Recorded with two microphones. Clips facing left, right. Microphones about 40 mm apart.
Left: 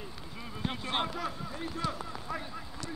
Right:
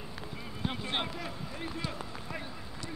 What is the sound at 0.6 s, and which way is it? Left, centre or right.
Speech, centre.